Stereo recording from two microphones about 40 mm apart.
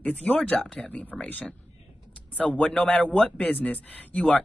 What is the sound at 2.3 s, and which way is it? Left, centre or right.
Speech, left.